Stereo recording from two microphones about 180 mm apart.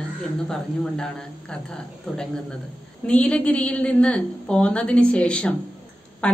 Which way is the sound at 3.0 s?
5° left (ahead or behind).